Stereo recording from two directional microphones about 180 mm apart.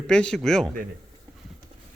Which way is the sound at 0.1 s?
5° left (ahead or behind).